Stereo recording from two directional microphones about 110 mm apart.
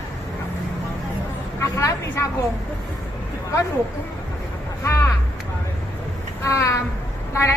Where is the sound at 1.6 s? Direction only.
25° left (ahead or behind).